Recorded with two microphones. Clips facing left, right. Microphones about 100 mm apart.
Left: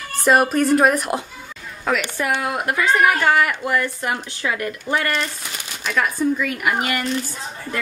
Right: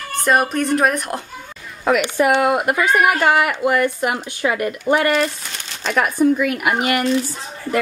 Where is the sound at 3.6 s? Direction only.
55° right (ahead or behind).